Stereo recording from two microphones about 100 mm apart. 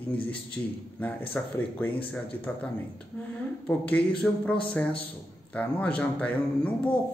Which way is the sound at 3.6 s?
15° left (ahead or behind).